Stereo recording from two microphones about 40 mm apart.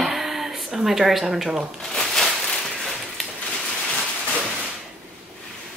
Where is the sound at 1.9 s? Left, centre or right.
Centre.